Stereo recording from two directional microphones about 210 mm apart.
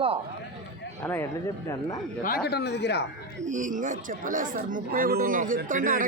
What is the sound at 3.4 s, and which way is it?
Speech, 35° right (ahead or behind).